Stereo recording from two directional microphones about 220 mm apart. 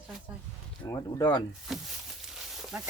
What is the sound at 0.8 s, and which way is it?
Speech, 15° left (ahead or behind).